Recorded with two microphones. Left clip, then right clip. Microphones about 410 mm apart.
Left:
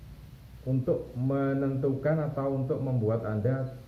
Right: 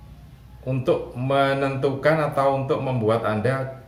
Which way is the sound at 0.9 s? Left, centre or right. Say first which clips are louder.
Right 9 dB; centre.